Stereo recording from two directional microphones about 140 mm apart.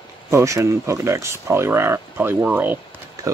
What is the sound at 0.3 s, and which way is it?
Speech, 20° right (ahead or behind).